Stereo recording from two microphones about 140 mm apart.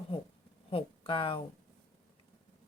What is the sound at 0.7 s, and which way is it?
Speech, 40° left (ahead or behind).